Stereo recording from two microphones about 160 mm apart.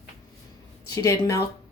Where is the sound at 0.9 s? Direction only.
20° left (ahead or behind).